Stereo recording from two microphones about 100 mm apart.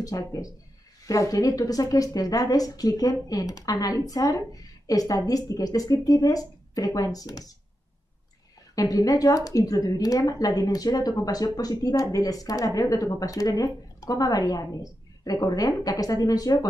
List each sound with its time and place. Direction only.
0.0 s a woman's voice: 35° left (ahead or behind)
8.7 s a woman's voice: 35° left (ahead or behind)